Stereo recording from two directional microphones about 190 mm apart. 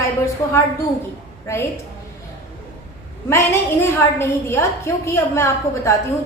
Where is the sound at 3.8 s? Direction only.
15° left (ahead or behind).